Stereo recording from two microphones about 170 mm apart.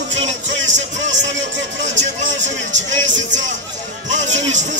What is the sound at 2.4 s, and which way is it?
A man's voice, 45° right (ahead or behind).